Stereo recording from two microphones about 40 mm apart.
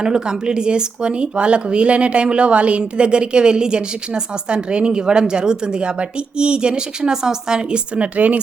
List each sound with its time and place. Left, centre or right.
0.0 s speech: centre
7.9 s speech: right